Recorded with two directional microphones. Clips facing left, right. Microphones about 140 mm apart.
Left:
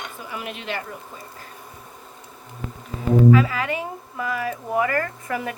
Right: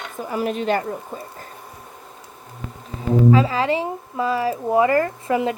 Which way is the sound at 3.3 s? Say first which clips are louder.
Right 3 dB; 30° right (ahead or behind).